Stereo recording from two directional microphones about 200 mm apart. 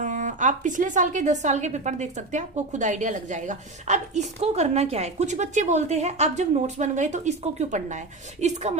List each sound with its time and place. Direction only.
0.0 s a woman's voice: 40° right (ahead or behind)